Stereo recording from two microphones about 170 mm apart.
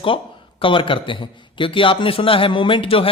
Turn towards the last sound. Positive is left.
turn(degrees=35)  # may be behind; listen again after turning